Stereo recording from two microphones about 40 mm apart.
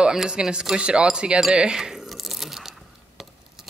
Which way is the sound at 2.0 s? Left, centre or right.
Centre.